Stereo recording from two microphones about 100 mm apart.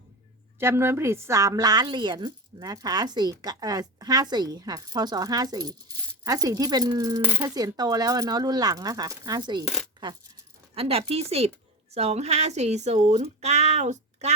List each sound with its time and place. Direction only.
0.6 s a woman's voice: 25° right (ahead or behind); by 7.2 s 40° right (ahead or behind)
7.2 s speech: 20° right (ahead or behind)
7.4 s a woman's voice: 40° right (ahead or behind)
9.6 s coin: centre (ahead or behind)
10.8 s a woman's voice: 80° right